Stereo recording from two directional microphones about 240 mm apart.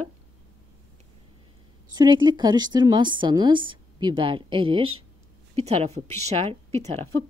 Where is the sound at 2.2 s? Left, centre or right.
Centre.